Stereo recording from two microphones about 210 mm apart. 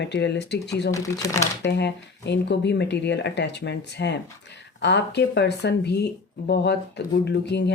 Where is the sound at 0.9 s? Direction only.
15° left (ahead or behind).